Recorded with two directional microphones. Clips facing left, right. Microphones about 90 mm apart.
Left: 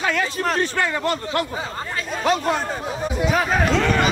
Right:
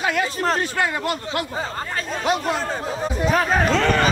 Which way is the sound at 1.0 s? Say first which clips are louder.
Left 2 dB; 40° left (ahead or behind).